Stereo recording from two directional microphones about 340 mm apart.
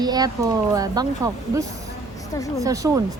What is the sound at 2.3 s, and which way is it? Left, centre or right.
Speech, centre.